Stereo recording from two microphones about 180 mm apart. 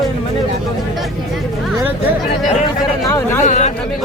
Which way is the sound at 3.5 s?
40° left (ahead or behind).